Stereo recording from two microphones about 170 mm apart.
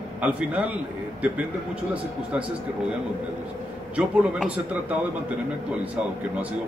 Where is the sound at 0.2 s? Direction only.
10° right (ahead or behind).